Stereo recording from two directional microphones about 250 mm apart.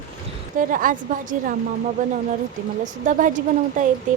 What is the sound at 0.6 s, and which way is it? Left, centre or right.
Speech, right.